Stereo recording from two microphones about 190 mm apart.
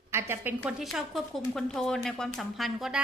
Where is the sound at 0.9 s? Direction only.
Centre (ahead or behind).